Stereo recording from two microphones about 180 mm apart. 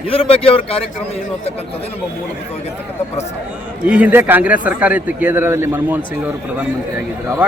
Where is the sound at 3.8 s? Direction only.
10° right (ahead or behind).